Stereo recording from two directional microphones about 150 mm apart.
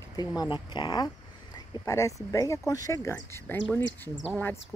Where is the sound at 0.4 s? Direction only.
30° left (ahead or behind).